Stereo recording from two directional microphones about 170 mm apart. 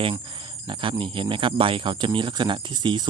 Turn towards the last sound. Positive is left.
turn(degrees=-25)  # may be behind; listen again after turning